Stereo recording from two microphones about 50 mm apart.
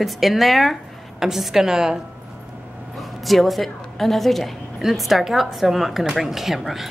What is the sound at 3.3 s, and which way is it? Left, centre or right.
A woman's voice, centre.